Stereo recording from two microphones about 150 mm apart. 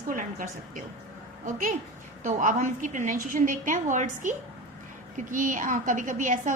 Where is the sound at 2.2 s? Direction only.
55° right (ahead or behind).